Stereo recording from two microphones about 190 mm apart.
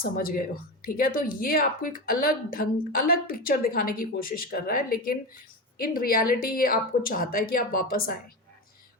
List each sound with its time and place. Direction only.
0.0 s a woman's voice: 50° left (ahead or behind)